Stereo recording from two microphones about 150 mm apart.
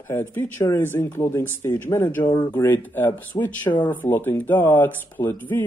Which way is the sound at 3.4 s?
25° left (ahead or behind).